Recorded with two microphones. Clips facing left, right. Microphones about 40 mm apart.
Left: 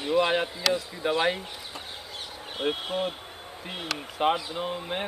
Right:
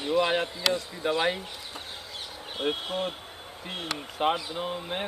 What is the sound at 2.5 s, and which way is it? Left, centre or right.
Speech, centre.